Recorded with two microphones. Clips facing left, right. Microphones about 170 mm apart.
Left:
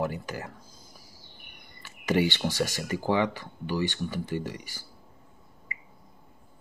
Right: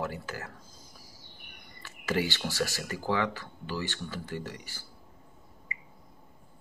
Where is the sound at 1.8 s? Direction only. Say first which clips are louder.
Left 5 dB; 20° left (ahead or behind).